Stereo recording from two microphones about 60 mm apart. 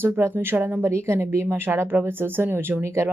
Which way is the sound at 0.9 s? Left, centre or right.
Right.